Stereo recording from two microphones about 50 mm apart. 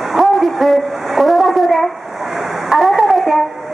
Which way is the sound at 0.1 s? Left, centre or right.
Centre.